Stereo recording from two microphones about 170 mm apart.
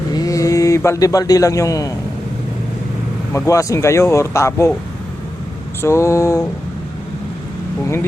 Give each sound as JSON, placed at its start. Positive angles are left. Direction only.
{"t": 0.1, "sound": "a sound", "side_deg": 20}
{"t": 3.3, "sound": "speech", "side_deg": 20}
{"t": 5.8, "sound": "speech", "side_deg": 15}